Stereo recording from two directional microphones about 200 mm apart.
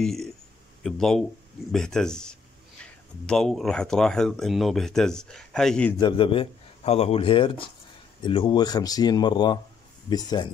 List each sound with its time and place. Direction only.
0.0 s speech: centre (ahead or behind)
5.9 s a man's voice: 25° left (ahead or behind)